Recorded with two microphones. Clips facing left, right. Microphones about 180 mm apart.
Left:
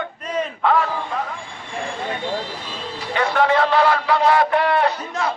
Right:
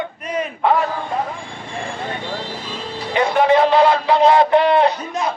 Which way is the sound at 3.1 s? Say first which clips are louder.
Right 3 dB; 20° right (ahead or behind).